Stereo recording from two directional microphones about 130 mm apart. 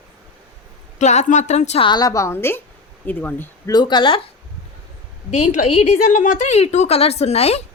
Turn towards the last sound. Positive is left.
turn(degrees=50)  # may be behind; listen again after turning